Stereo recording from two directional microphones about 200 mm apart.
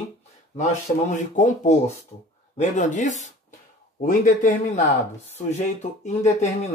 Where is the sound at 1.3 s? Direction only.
40° left (ahead or behind).